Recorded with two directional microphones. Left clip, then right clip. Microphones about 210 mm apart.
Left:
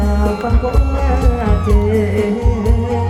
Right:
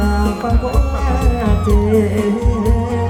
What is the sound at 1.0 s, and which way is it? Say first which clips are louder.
Music: left 1 dB; 40° right (ahead or behind).